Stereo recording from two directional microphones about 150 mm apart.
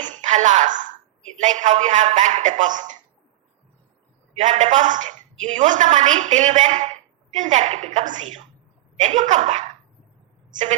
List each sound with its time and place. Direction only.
0.0 s a sound: 55° right (ahead or behind)
1.4 s a woman's voice: 55° right (ahead or behind)
4.4 s a woman's voice: 55° right (ahead or behind)